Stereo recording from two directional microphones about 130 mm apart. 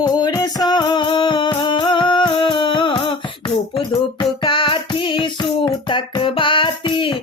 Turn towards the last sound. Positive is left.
turn(degrees=40)  # may be behind; listen again after turning